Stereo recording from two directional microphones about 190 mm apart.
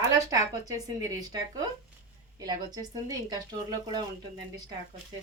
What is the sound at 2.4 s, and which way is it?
Speech, 20° right (ahead or behind).